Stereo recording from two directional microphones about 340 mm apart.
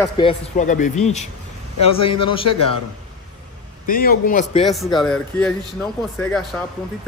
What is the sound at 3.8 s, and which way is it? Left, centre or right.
Speech, left.